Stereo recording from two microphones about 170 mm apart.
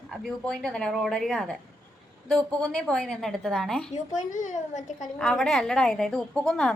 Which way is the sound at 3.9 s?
50° left (ahead or behind).